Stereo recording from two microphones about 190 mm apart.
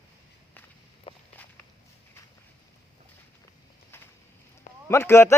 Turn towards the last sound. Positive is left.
turn(degrees=15)  # may be behind; listen again after turning